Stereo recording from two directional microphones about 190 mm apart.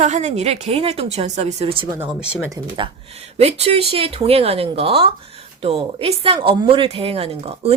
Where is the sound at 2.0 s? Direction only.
5° right (ahead or behind).